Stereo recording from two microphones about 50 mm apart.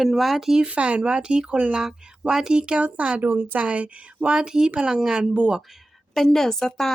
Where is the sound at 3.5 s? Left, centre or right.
Right.